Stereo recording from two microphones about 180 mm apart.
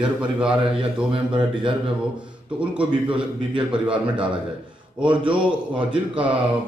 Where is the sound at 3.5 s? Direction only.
5° right (ahead or behind).